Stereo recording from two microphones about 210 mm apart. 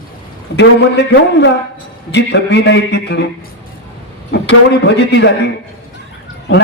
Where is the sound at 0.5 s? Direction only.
55° left (ahead or behind).